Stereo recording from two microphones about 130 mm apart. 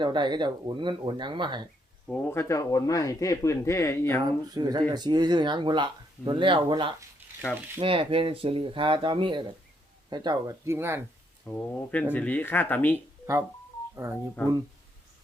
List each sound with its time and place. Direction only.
0.0 s speech: 35° right (ahead or behind)
2.0 s speech: 10° left (ahead or behind)
4.4 s speech: 30° right (ahead or behind)
11.4 s speech: 15° left (ahead or behind)
13.9 s speech: 20° right (ahead or behind)